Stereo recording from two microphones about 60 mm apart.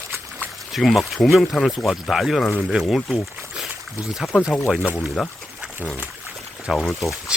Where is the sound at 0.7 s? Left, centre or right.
Centre.